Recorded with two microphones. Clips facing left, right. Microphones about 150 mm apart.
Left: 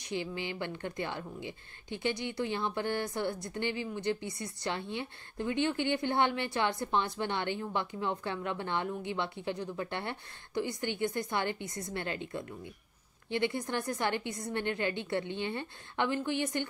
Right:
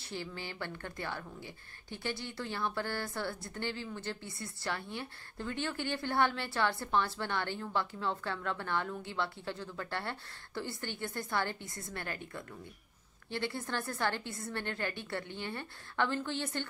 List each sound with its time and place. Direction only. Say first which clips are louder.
0.0 s a woman's voice: left 6 dB; 15° left (ahead or behind)